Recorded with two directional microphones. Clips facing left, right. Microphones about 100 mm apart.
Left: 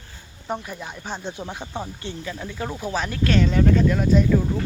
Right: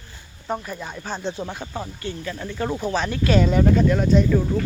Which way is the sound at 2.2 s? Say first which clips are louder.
Right 4 dB; 5° left (ahead or behind).